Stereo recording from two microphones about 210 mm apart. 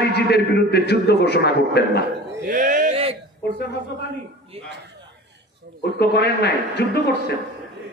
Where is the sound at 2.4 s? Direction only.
40° right (ahead or behind).